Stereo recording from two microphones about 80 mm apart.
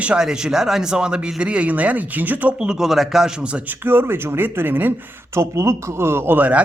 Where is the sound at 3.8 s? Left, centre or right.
Right.